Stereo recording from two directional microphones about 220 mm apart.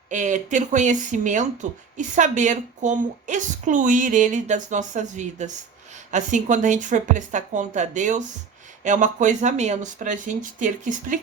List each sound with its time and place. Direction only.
0.1 s a woman's voice: 35° right (ahead or behind)